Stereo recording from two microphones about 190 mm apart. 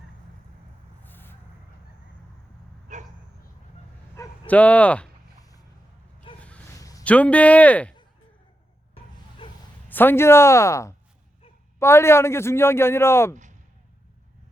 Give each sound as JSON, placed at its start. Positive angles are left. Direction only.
{"t": 1.0, "sound": "vehicle", "side_deg": 10}
{"t": 4.1, "sound": "bow-wow", "side_deg": 10}
{"t": 6.7, "sound": "a sound", "side_deg": 20}
{"t": 7.0, "sound": "a man's voice", "side_deg": 5}
{"t": 9.4, "sound": "a sound", "side_deg": 25}
{"t": 9.9, "sound": "a man's voice", "side_deg": 10}